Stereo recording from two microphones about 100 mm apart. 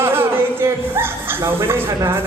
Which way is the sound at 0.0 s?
25° right (ahead or behind).